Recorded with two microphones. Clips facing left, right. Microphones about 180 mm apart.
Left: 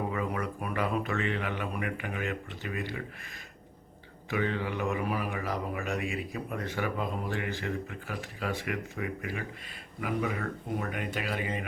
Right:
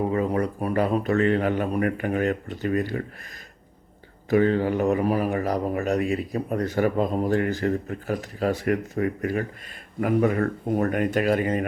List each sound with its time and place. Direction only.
0.1 s speech: 35° right (ahead or behind)
4.3 s speech: 40° right (ahead or behind)